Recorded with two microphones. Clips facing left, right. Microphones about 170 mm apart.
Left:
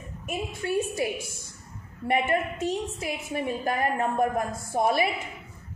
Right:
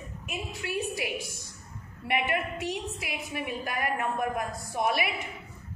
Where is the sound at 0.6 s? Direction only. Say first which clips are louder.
Left 7 dB; 35° left (ahead or behind).